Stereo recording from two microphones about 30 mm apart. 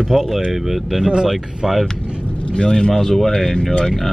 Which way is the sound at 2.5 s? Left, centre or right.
Left.